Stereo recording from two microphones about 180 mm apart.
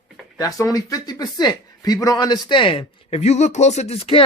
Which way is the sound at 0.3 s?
20° left (ahead or behind).